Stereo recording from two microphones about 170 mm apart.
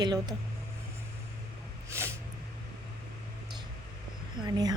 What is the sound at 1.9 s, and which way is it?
Snort, 15° right (ahead or behind).